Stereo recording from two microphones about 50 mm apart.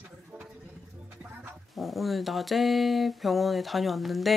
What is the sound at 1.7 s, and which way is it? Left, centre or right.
Mantra, centre.